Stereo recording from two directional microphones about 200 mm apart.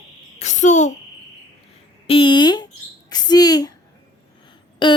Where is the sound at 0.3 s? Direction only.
35° left (ahead or behind).